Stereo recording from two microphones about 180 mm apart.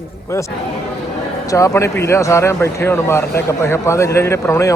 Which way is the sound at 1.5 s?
15° left (ahead or behind).